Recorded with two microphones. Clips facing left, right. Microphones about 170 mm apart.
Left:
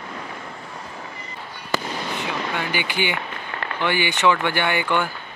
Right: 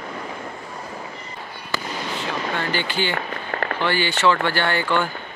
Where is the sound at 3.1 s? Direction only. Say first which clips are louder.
Right 2 dB; 50° right (ahead or behind).